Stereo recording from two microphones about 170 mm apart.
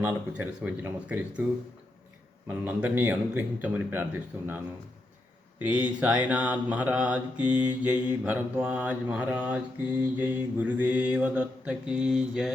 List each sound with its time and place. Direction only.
0.0 s mantra: 10° right (ahead or behind)
2.5 s mantra: 10° right (ahead or behind)
5.6 s mantra: 10° right (ahead or behind)